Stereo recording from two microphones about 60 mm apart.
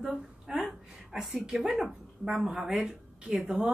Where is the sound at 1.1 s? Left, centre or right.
Centre.